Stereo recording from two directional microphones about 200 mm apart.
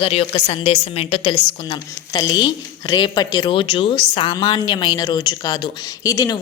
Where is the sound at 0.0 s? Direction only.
30° left (ahead or behind).